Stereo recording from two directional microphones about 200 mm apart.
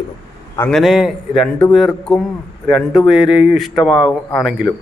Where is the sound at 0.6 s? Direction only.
5° left (ahead or behind).